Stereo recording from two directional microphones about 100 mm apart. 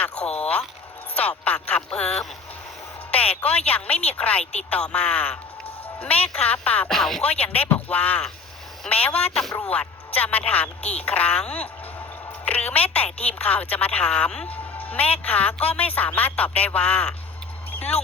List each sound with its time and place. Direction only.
0.3 s vehicle: 15° left (ahead or behind)
1.1 s a woman's voice: 15° left (ahead or behind)
6.8 s speech: 5° left (ahead or behind)
7.2 s speech: 15° left (ahead or behind)
17.7 s a sound: 15° left (ahead or behind)